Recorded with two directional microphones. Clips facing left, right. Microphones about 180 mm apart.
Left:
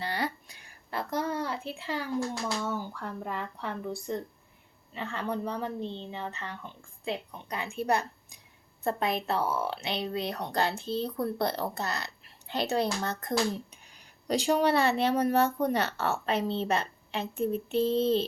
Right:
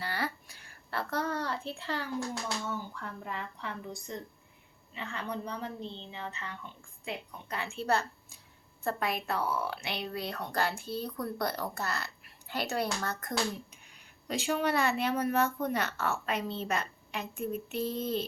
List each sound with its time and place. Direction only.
0.0 s a sound: 20° left (ahead or behind)
2.6 s speech: 40° left (ahead or behind)
7.4 s a woman's voice: 15° left (ahead or behind)
13.9 s speech: 35° left (ahead or behind)